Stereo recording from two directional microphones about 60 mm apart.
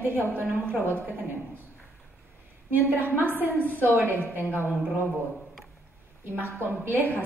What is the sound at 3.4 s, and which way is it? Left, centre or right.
A woman's voice, right.